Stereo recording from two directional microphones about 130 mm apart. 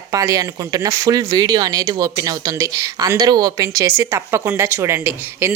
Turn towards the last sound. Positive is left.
turn(degrees=-20)  # may be behind; listen again after turning